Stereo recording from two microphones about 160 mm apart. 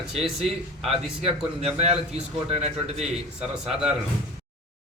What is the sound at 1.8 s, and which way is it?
Speech, 40° right (ahead or behind).